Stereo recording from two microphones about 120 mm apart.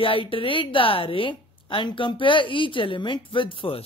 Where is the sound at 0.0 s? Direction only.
50° left (ahead or behind).